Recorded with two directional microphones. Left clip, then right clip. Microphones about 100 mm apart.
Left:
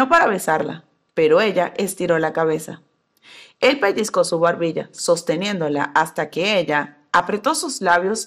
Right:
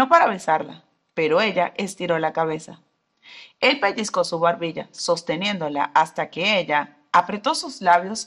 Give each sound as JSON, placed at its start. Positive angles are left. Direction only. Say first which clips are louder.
{"t": 0.0, "sound": "speech", "louder": "left 1 dB", "side_deg": 30}